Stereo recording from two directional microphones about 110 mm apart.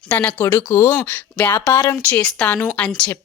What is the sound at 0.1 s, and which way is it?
Speech, 15° left (ahead or behind).